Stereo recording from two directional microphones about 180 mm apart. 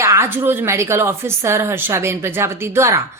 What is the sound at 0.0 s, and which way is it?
A woman's voice, 15° right (ahead or behind).